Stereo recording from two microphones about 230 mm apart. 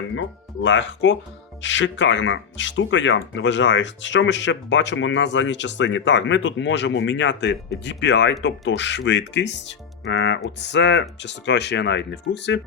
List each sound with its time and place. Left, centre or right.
0.2 s speech: left